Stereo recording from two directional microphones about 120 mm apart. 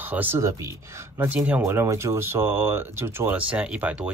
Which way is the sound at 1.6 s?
25° right (ahead or behind).